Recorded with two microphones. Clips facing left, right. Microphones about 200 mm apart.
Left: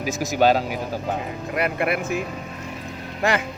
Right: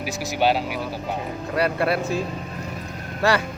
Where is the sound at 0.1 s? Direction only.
45° left (ahead or behind).